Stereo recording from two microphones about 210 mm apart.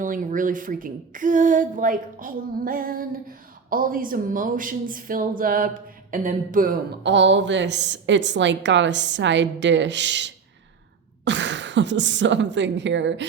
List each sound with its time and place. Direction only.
0.0 s a woman's voice: 40° right (ahead or behind)
7.0 s a woman's voice: 60° right (ahead or behind)